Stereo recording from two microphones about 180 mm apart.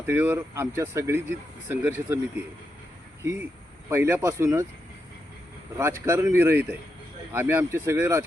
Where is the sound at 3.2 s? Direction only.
15° right (ahead or behind).